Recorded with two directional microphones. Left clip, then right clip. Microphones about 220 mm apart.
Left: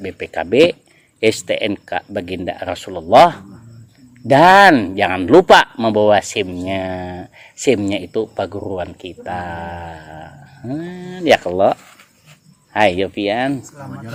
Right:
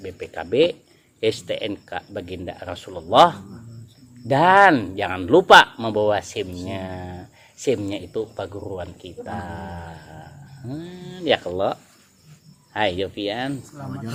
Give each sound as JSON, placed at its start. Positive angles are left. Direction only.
{"t": 0.0, "sound": "speech", "side_deg": 30}